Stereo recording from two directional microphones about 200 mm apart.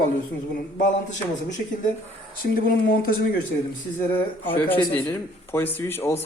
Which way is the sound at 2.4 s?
45° left (ahead or behind).